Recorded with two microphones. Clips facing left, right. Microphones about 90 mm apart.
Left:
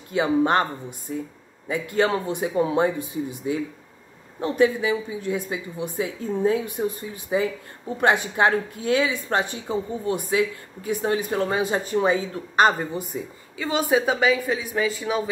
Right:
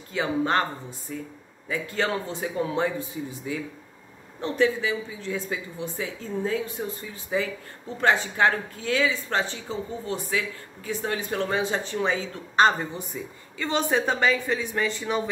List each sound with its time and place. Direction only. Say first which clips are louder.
0.1 s a woman's voice: left 4 dB; 20° left (ahead or behind)
4.4 s a woman's voice: left 3 dB; 15° left (ahead or behind)